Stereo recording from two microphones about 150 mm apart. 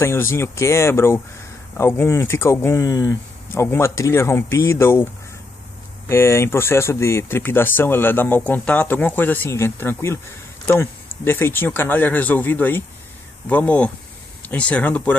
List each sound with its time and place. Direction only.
0.0 s speech: 20° left (ahead or behind)